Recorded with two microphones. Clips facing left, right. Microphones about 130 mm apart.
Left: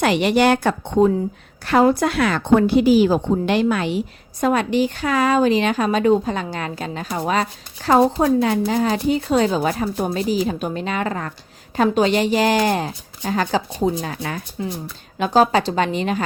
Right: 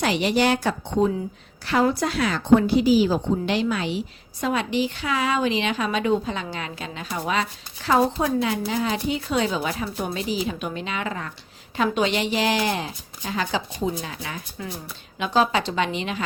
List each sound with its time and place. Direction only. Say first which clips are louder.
0.0 s a woman's voice: left 5 dB; 60° left (ahead or behind); by 16.2 s 45° left (ahead or behind)